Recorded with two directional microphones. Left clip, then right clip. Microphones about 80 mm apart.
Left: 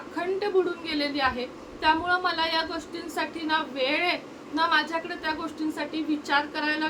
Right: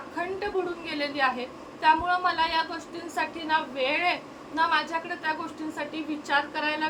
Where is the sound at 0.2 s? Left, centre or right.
Left.